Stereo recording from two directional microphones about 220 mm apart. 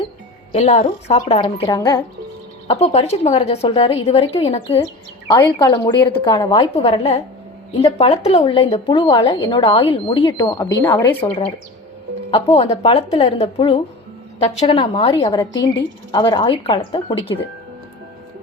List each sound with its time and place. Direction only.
0.5 s speech: 30° left (ahead or behind)
2.6 s speech: 30° left (ahead or behind)
5.3 s a woman's voice: 15° left (ahead or behind)